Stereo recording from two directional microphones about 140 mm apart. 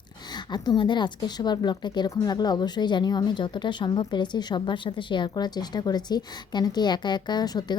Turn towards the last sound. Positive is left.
turn(degrees=30)  # may be behind; listen again after turning